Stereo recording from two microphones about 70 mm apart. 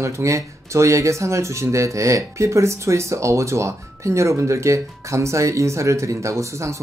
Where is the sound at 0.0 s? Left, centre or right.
Right.